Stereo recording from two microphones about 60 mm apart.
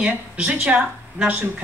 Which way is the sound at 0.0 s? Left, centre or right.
Right.